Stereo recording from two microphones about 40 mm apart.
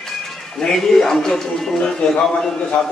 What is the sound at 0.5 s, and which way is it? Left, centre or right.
A man's voice, centre.